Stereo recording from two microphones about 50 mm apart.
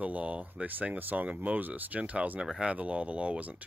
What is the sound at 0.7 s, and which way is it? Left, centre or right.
Speech, right.